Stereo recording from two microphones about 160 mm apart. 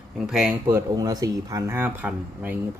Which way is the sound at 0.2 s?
5° right (ahead or behind).